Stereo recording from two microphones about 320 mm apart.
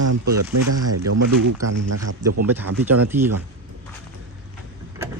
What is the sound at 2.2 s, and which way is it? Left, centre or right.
Speech, centre.